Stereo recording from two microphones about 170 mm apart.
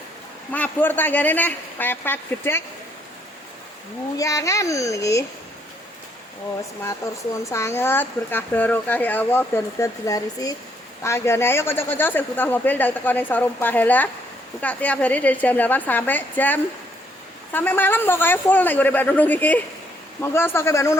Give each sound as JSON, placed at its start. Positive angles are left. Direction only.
{"t": 0.5, "sound": "speech", "side_deg": 10}
{"t": 4.2, "sound": "speech", "side_deg": 20}
{"t": 7.0, "sound": "speech", "side_deg": 15}